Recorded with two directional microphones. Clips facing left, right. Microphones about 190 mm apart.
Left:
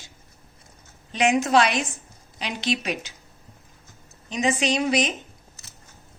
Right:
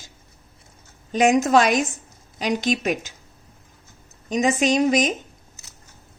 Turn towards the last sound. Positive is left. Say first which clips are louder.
# right 4 dB
turn(degrees=-45)  # may be behind; listen again after turning